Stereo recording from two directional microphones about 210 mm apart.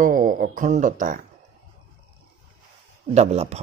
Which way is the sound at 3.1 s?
30° right (ahead or behind).